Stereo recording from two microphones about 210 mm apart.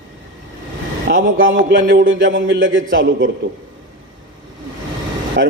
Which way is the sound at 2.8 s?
40° right (ahead or behind).